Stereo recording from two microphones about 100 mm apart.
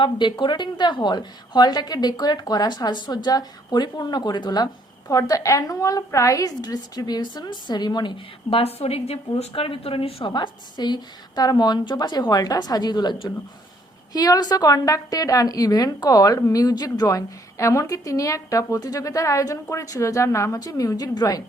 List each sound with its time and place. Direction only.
0.0 s a woman's voice: 50° left (ahead or behind)
8.4 s a woman's voice: 75° left (ahead or behind); by 9.1 s 90° left
9.6 s a woman's voice: 65° left (ahead or behind)
10.3 s a woman's voice: 45° left (ahead or behind)